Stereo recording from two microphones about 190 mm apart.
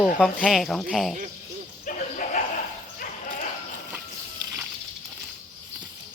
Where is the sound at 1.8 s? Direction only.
45° left (ahead or behind).